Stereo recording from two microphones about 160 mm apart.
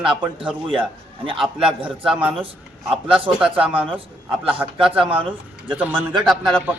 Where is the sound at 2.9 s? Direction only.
35° right (ahead or behind).